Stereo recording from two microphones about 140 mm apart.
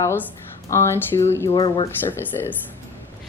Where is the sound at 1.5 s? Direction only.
35° left (ahead or behind).